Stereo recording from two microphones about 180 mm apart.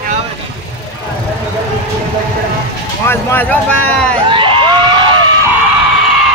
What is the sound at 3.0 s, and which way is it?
Speech, 10° left (ahead or behind).